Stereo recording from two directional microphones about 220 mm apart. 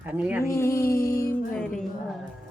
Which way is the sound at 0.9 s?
40° left (ahead or behind).